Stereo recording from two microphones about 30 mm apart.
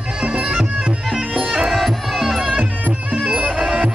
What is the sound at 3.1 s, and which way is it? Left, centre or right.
Music, right.